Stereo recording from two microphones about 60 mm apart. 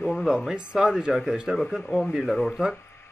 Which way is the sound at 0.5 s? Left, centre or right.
Centre.